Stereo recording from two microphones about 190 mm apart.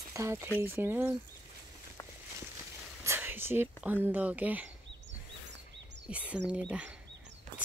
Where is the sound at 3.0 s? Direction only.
10° right (ahead or behind).